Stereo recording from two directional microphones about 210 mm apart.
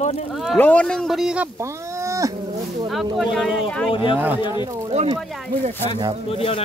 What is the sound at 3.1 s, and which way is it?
Speech, centre (ahead or behind).